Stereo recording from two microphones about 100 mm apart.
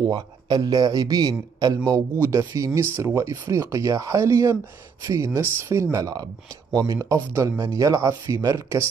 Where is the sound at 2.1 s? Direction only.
30° right (ahead or behind).